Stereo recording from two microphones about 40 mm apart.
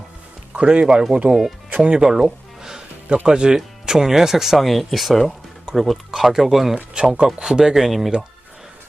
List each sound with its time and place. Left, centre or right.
0.5 s speech: right; by 4.5 s centre
4.5 s speech: centre
6.9 s speech: centre